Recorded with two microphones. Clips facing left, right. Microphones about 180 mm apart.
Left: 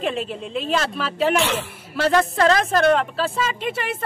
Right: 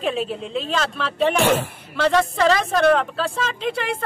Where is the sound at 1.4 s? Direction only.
50° right (ahead or behind).